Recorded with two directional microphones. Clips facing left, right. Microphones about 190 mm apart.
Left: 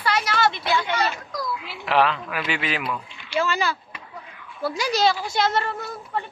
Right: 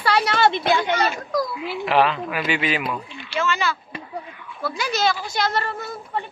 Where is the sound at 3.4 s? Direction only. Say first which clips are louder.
Even; 35° left (ahead or behind).